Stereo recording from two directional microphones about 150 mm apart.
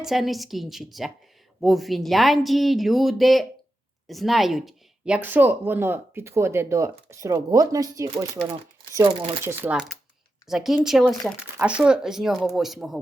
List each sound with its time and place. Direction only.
0.0 s speech: centre (ahead or behind); by 9.0 s 20° right (ahead or behind)
9.0 s speech: 35° right (ahead or behind)
9.4 s speech: 15° right (ahead or behind)